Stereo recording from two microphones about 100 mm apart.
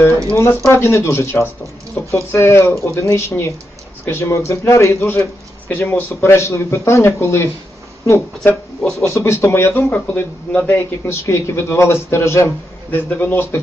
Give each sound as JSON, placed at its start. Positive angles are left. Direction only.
{"t": 0.1, "sound": "a sound", "side_deg": -30}
{"t": 0.7, "sound": "speech", "side_deg": 25}
{"t": 8.8, "sound": "speech", "side_deg": 10}
{"t": 9.0, "sound": "speech", "side_deg": 25}